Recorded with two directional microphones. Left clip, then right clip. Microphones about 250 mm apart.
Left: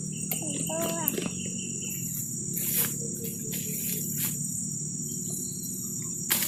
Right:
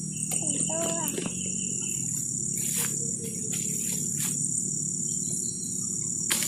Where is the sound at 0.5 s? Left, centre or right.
Centre.